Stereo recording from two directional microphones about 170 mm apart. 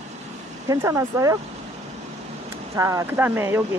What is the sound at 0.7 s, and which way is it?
Speech, 20° right (ahead or behind).